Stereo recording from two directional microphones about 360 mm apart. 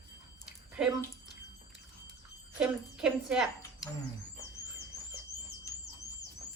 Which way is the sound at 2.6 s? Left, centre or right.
Centre.